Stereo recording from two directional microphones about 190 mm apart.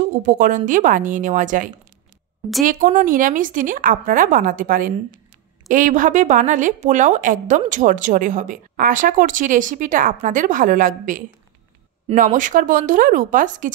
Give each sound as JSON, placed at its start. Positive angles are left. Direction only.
{"t": 0.2, "sound": "speech", "side_deg": -45}